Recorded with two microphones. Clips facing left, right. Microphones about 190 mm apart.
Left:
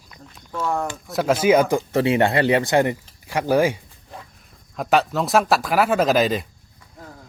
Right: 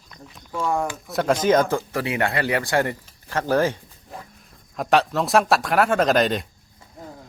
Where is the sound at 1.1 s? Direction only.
5° left (ahead or behind).